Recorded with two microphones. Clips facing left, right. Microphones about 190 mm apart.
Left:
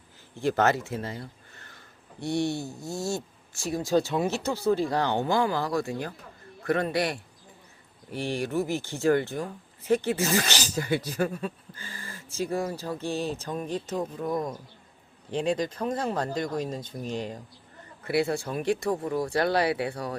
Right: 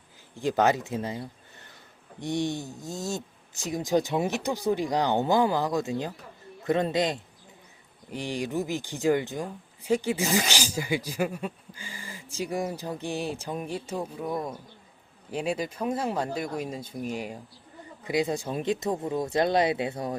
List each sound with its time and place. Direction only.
0.3 s speech: 15° right (ahead or behind)